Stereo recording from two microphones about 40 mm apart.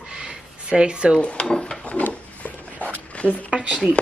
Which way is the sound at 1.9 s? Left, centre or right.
Left.